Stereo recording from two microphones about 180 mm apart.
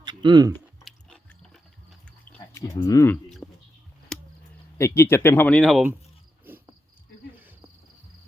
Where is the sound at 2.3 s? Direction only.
15° left (ahead or behind).